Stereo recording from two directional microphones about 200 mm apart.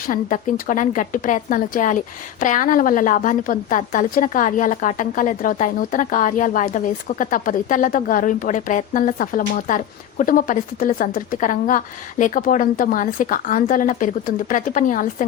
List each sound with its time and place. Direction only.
0.1 s a woman's voice: 40° left (ahead or behind)